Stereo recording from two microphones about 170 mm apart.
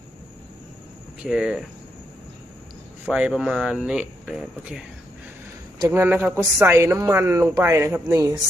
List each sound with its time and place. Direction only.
1.2 s speech: 5° right (ahead or behind)
3.1 s speech: 5° right (ahead or behind); by 8.4 s 20° right (ahead or behind)